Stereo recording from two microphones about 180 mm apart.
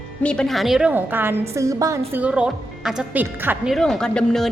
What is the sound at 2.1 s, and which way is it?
A woman's voice, 5° right (ahead or behind).